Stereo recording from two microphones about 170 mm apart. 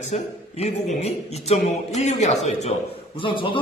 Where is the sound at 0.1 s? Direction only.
40° left (ahead or behind).